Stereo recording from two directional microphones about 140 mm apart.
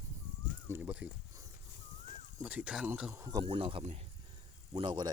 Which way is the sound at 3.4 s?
40° right (ahead or behind).